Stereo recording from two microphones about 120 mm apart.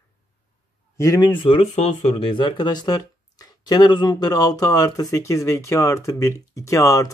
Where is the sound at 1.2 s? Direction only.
45° left (ahead or behind).